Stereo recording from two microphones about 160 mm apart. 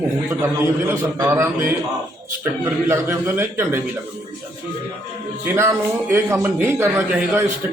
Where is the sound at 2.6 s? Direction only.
15° right (ahead or behind).